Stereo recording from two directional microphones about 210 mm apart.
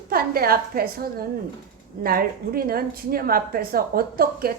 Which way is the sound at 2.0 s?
45° right (ahead or behind).